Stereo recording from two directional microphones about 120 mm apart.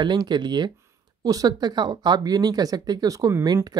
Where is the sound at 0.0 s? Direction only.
40° right (ahead or behind).